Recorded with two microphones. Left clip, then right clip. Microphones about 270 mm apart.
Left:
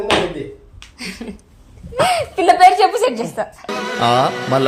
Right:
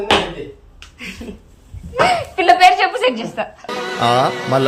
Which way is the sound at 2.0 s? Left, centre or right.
Left.